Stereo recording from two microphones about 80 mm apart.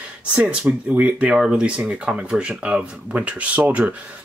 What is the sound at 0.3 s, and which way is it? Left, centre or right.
Speech, centre.